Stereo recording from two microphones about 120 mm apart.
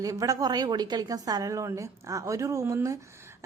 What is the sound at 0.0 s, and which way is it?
A woman's voice, 30° right (ahead or behind).